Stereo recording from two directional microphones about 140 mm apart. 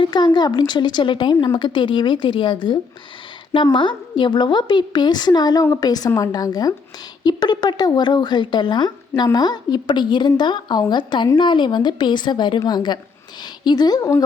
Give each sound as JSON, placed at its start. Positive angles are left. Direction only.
{"t": 0.0, "sound": "a woman's voice", "side_deg": 30}